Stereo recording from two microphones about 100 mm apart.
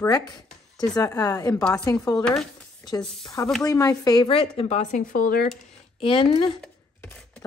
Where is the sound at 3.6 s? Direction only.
35° left (ahead or behind).